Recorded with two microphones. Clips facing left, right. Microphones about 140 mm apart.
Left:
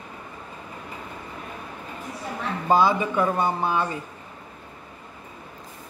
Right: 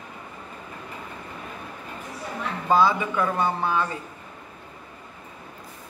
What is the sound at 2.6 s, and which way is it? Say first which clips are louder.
A woman's voice: left 1 dB; 15° left (ahead or behind).